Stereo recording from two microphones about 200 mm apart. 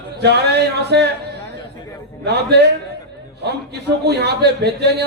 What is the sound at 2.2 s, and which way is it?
A man's voice, 55° right (ahead or behind).